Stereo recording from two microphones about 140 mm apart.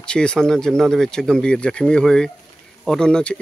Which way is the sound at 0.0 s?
5° left (ahead or behind).